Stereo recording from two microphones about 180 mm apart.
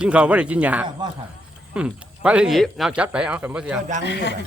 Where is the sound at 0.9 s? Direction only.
25° right (ahead or behind).